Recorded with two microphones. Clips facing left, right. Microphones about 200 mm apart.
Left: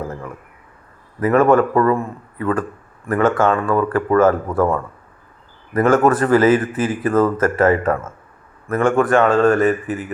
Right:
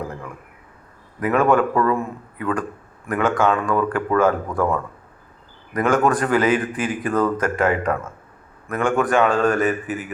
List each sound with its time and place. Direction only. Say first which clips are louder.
1.2 s a man's voice: left 4 dB; 5° left (ahead or behind)
9.8 s speech: left 3 dB; 35° left (ahead or behind)